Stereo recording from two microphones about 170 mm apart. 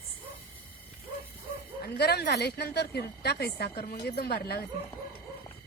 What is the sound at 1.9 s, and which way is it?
A woman's voice, 75° left (ahead or behind).